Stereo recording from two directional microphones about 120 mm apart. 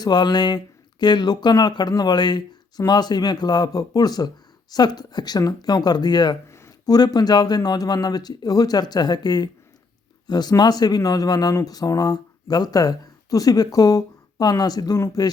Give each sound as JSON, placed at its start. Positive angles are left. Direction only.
{"t": 0.0, "sound": "speech", "side_deg": 35}